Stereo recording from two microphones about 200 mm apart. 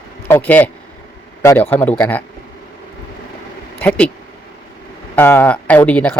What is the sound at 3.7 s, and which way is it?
Speech, 5° left (ahead or behind).